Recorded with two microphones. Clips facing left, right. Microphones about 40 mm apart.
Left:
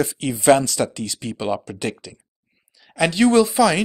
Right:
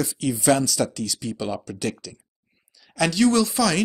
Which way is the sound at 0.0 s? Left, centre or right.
Left.